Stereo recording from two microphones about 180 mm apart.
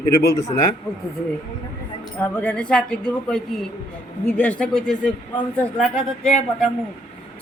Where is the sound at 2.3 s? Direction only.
5° left (ahead or behind).